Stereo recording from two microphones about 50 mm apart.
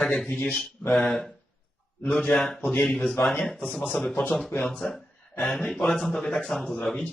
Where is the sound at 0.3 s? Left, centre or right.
Left.